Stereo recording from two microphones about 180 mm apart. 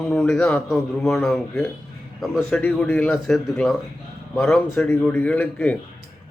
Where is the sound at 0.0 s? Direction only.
Centre (ahead or behind).